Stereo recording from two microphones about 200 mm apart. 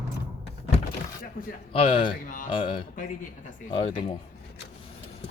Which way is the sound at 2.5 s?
25° left (ahead or behind).